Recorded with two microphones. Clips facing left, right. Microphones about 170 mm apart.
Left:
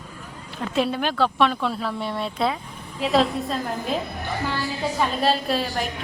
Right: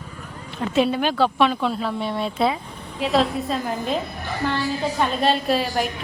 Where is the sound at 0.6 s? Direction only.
Centre (ahead or behind).